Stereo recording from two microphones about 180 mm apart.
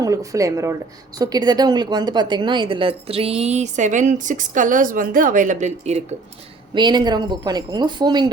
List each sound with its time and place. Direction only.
0.0 s a woman's voice: 20° right (ahead or behind); by 6.0 s 40° right (ahead or behind)
6.7 s speech: 25° right (ahead or behind)